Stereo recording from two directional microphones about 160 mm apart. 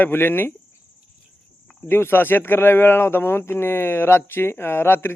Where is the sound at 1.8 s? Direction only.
15° left (ahead or behind).